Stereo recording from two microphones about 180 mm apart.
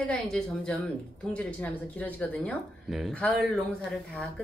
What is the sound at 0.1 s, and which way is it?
A woman's voice, 5° left (ahead or behind).